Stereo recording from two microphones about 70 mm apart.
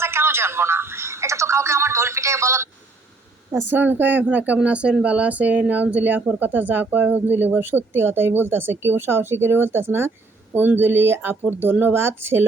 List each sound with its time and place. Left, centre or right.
0.0 s speech: right
3.5 s a woman's voice: right